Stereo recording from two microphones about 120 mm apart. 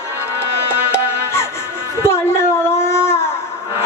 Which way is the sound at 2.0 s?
20° left (ahead or behind).